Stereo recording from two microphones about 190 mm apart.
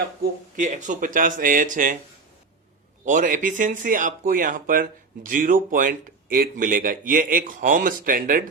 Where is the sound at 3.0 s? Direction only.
45° right (ahead or behind).